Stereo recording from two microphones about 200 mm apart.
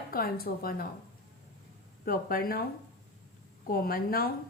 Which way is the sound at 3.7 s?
45° left (ahead or behind).